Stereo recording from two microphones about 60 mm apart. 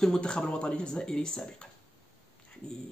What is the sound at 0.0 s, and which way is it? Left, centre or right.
A man's voice, centre.